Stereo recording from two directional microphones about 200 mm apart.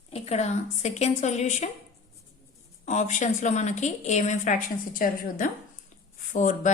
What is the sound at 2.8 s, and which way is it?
A woman's voice, 35° left (ahead or behind).